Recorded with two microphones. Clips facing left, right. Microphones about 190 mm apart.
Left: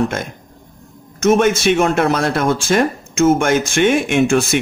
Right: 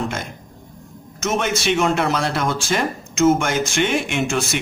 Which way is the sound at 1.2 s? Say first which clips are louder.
Left 8 dB; 50° left (ahead or behind).